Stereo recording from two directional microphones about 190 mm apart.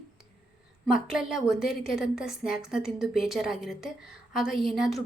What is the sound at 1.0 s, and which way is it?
A woman's voice, centre (ahead or behind).